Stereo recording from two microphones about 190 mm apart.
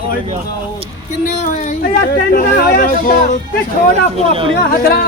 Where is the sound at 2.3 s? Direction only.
50° left (ahead or behind).